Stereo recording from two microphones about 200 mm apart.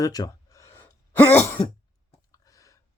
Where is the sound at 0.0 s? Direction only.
15° left (ahead or behind).